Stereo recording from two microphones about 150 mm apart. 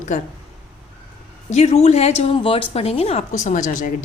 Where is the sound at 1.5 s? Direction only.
45° left (ahead or behind).